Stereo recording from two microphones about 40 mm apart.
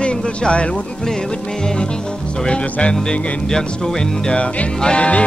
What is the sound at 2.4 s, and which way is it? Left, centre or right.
Music, left.